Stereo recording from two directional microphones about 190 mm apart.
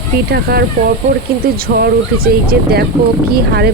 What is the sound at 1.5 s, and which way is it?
Speech, 50° right (ahead or behind).